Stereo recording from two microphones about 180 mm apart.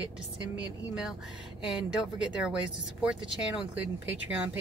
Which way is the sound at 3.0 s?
5° right (ahead or behind).